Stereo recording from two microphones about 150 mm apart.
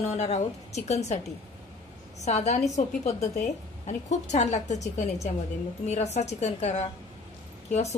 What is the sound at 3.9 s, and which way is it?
A woman's voice, 50° left (ahead or behind).